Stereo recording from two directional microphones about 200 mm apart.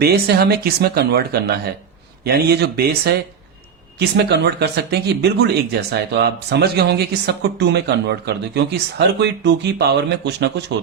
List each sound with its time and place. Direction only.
0.0 s speech: 50° right (ahead or behind)